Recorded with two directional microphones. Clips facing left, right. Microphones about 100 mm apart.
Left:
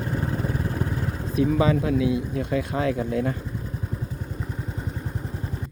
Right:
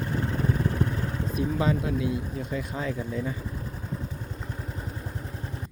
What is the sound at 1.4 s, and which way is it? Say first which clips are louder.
Speech: left 6 dB; 90° left.